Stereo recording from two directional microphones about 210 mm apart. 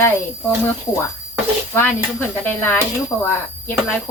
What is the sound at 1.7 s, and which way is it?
Speech, 10° left (ahead or behind).